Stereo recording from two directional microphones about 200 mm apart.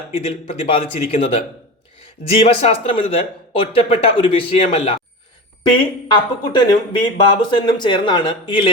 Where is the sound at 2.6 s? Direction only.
30° left (ahead or behind).